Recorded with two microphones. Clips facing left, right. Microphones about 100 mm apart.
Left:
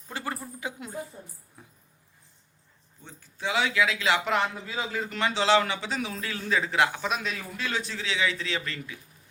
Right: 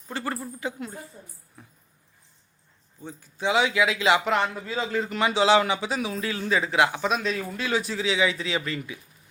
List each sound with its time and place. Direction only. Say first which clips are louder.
0.1 s a sound: right 3 dB; 10° left (ahead or behind)
3.0 s a man's voice: right 5 dB; 15° right (ahead or behind)
4.3 s a man's voice: right 2 dB; 5° left (ahead or behind); by 9.0 s 10° right (ahead or behind)